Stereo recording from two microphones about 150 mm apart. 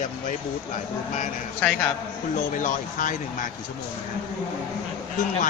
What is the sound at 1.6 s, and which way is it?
Speech, 10° left (ahead or behind).